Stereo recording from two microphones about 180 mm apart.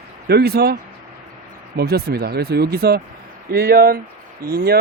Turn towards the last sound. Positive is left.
turn(degrees=-60)  # may be behind; listen again after turning